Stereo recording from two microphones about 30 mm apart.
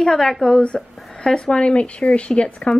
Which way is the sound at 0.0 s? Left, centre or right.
Centre.